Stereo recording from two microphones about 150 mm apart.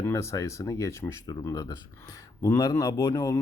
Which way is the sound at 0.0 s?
20° left (ahead or behind).